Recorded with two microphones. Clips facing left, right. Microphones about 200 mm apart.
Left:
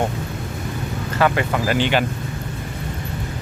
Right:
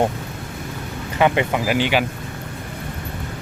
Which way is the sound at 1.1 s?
20° right (ahead or behind).